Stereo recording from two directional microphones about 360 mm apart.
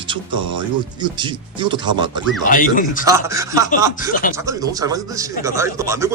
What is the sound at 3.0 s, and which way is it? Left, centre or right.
Speech, centre.